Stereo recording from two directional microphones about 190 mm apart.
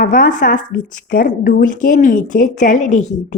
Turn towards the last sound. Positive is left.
turn(degrees=40)  # may be behind; listen again after turning